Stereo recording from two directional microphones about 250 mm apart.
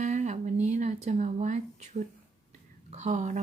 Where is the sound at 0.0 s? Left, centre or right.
Right.